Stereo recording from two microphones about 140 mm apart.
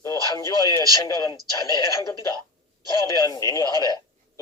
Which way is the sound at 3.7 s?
30° right (ahead or behind).